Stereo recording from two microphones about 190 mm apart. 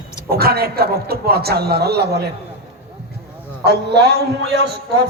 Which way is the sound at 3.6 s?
60° right (ahead or behind).